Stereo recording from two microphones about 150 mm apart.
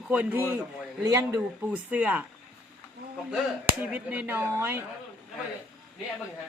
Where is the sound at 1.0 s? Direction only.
20° right (ahead or behind).